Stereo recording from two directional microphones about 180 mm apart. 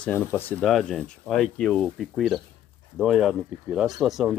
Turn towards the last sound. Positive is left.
turn(degrees=0)  # may be behind; listen again after turning